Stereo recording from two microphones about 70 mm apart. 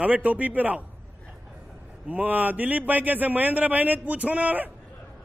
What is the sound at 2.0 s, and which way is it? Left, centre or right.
A man's voice, right.